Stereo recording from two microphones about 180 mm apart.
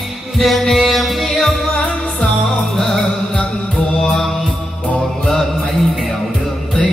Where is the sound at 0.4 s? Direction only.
Centre (ahead or behind).